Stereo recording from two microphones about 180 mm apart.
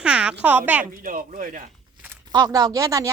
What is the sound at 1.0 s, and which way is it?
Speech, 50° right (ahead or behind).